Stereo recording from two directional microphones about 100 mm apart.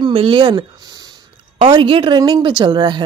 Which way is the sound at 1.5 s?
60° right (ahead or behind).